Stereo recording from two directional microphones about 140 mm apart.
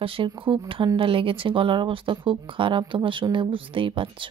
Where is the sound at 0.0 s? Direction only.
40° right (ahead or behind).